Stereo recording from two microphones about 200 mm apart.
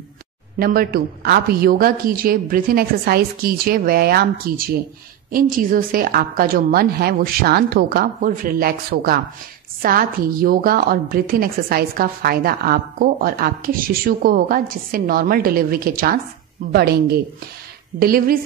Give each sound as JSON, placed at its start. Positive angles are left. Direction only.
{"t": 0.6, "sound": "a woman's voice", "side_deg": -50}